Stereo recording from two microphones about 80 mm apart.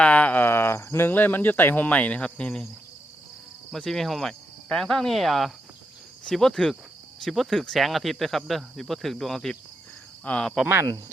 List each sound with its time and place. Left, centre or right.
0.0 s speech: centre
3.7 s speech: centre
10.2 s speech: centre